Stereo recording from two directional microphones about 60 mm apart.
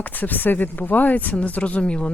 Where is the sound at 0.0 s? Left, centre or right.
Left.